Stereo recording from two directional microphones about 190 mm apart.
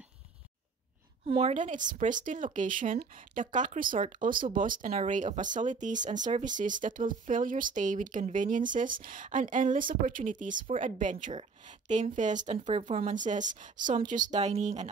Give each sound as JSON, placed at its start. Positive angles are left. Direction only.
{"t": 1.3, "sound": "speech", "side_deg": -40}